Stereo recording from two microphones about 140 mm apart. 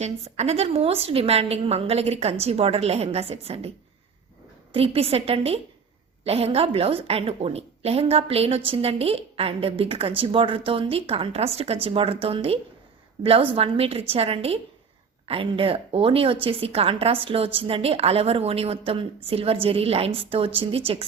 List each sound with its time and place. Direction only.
0.0 s a woman's voice: 50° right (ahead or behind)
4.7 s a woman's voice: 45° right (ahead or behind)